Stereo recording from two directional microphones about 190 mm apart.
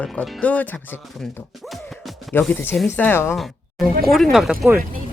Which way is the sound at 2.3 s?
10° left (ahead or behind).